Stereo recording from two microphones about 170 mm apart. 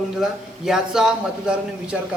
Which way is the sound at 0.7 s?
5° right (ahead or behind).